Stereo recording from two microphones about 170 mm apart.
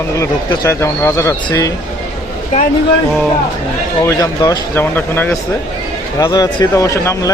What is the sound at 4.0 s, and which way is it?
Speech, 20° left (ahead or behind).